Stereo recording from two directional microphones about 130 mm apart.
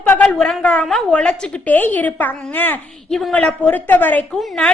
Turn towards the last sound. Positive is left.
turn(degrees=5)  # may be behind; listen again after turning